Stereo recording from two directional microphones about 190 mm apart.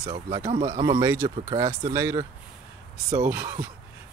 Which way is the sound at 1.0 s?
15° right (ahead or behind).